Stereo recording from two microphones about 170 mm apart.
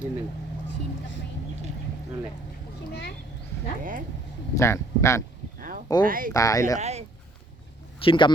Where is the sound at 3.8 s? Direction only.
50° right (ahead or behind).